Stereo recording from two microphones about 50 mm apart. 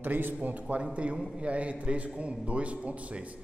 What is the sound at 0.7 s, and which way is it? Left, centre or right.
A man's voice, right.